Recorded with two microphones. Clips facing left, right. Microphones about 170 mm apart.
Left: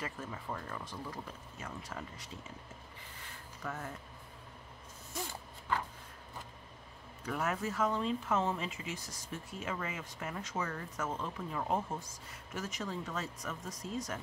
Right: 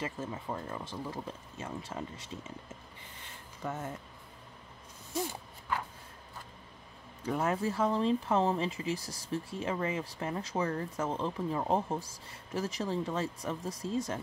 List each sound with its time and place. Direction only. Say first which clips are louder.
0.0 s speech: right 4 dB; 25° right (ahead or behind)
3.6 s speech: right 4 dB; 25° right (ahead or behind)
7.2 s speech: right 5 dB; 30° right (ahead or behind)